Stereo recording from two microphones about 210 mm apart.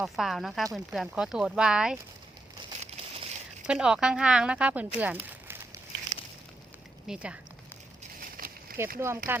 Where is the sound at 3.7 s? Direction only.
5° right (ahead or behind).